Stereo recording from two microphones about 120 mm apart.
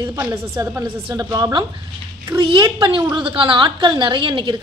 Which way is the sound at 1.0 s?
35° right (ahead or behind).